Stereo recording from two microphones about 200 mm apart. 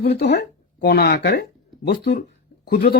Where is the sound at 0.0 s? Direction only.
55° left (ahead or behind).